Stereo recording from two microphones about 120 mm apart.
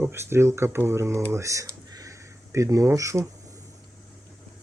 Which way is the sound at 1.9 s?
25° right (ahead or behind).